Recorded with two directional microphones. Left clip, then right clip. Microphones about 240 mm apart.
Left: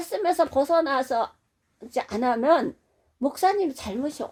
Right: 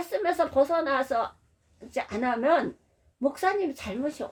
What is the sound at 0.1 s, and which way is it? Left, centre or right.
A woman's voice, left.